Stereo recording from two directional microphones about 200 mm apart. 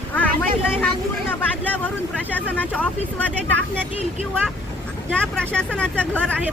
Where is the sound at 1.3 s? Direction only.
10° left (ahead or behind).